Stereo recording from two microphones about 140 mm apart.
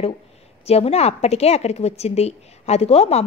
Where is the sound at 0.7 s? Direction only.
50° left (ahead or behind).